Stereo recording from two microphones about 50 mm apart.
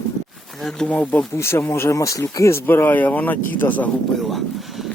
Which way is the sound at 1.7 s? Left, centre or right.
Left.